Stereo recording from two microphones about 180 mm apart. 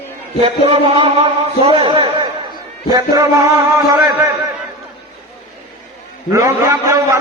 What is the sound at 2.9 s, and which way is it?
Music, 20° right (ahead or behind).